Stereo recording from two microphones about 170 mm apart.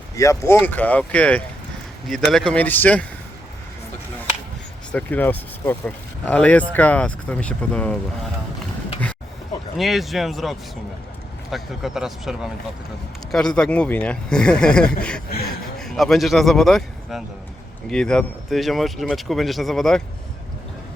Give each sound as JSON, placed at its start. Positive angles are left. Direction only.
{"t": 0.2, "sound": "speech", "side_deg": 20}
{"t": 4.9, "sound": "speech", "side_deg": 10}
{"t": 9.7, "sound": "speech", "side_deg": 0}